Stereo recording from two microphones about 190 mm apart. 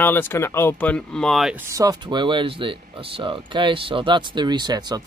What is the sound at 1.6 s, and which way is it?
Speech, 20° right (ahead or behind).